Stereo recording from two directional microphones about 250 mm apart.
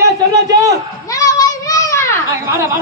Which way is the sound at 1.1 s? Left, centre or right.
Centre.